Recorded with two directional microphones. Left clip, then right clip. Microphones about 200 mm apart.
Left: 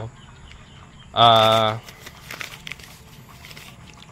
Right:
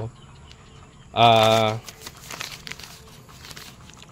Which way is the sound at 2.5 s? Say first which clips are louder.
Left 1 dB; 50° right (ahead or behind).